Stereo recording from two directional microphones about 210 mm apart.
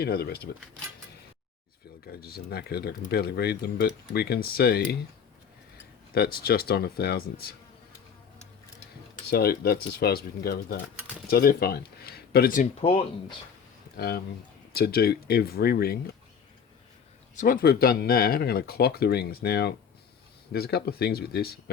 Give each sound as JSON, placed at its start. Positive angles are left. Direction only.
{"t": 0.0, "sound": "speech", "side_deg": 50}
{"t": 2.2, "sound": "speech", "side_deg": 50}
{"t": 6.1, "sound": "speech", "side_deg": 45}
{"t": 9.3, "sound": "speech", "side_deg": 45}
{"t": 12.8, "sound": "speech", "side_deg": 25}
{"t": 13.9, "sound": "speech", "side_deg": 45}
{"t": 17.3, "sound": "speech", "side_deg": 40}